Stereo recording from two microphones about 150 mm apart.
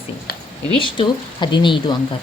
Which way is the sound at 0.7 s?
35° left (ahead or behind).